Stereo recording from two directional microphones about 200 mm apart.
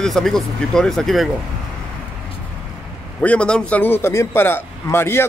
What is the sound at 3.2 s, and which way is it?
Speech, 5° left (ahead or behind).